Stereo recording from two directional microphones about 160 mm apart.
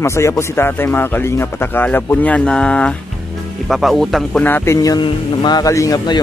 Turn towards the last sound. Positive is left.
turn(degrees=25)  # may be behind; listen again after turning